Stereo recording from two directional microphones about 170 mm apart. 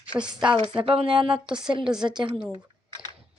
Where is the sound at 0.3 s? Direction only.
30° right (ahead or behind).